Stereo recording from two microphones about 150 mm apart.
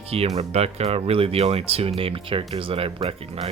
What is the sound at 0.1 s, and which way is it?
Speech, 45° right (ahead or behind).